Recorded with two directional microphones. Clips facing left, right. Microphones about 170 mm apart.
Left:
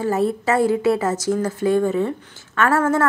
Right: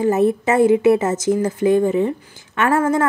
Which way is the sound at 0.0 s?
20° right (ahead or behind).